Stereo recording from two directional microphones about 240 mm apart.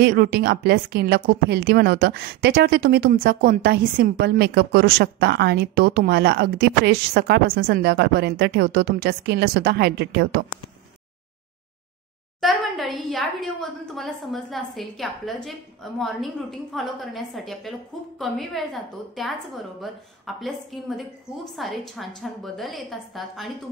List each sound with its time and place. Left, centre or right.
0.0 s a woman's voice: right
12.4 s a woman's voice: centre